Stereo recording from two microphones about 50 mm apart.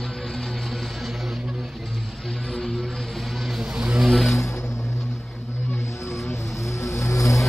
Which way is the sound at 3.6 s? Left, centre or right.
Centre.